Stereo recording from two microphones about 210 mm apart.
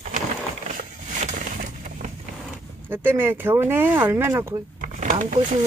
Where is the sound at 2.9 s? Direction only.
10° right (ahead or behind).